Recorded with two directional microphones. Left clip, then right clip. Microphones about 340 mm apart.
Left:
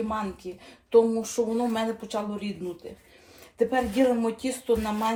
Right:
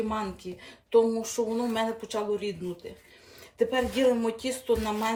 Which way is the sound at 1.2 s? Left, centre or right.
Centre.